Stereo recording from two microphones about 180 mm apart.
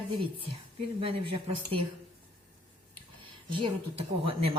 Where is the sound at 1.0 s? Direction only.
30° right (ahead or behind).